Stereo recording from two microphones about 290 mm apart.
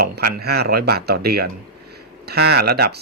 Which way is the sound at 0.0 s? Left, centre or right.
Right.